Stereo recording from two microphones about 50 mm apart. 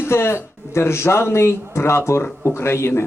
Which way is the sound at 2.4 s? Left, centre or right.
Left.